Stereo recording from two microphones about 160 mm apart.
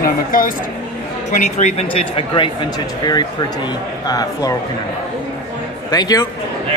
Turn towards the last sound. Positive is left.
turn(degrees=25)  # may be behind; listen again after turning